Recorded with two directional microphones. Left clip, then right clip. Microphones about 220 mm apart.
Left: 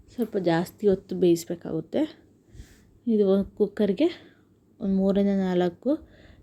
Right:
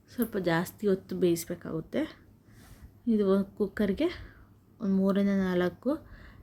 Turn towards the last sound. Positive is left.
turn(degrees=0)  # may be behind; listen again after turning